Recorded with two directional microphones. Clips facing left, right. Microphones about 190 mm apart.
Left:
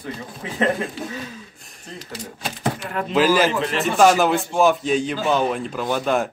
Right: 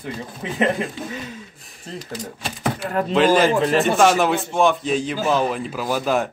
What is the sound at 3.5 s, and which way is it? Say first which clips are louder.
Speech: right 5 dB; 40° right (ahead or behind).